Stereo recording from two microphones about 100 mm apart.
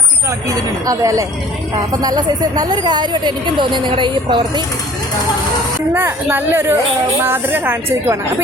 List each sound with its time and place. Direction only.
0.3 s speech: 35° right (ahead or behind); by 4.6 s 55° right (ahead or behind)
5.9 s a woman's voice: 25° right (ahead or behind)